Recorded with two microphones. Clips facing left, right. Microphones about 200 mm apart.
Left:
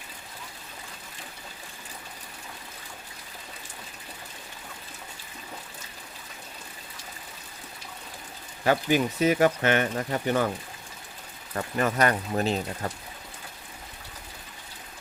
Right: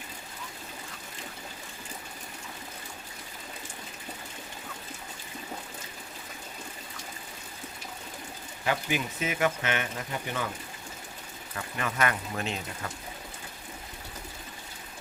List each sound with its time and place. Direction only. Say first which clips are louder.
8.6 s speech: left 7 dB; 40° left (ahead or behind)
11.5 s speech: left 7 dB; 40° left (ahead or behind)